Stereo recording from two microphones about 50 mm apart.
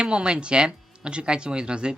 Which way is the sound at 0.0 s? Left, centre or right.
Centre.